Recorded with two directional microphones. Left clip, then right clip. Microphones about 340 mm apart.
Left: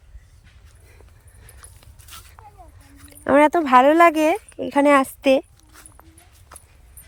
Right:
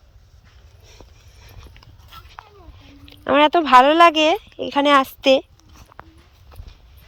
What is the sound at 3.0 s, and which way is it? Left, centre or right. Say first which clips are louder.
Speech: even; centre.